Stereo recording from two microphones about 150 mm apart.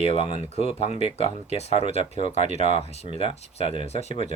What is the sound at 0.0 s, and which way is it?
Speech, 40° left (ahead or behind).